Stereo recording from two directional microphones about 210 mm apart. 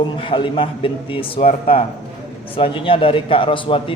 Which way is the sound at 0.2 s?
25° left (ahead or behind).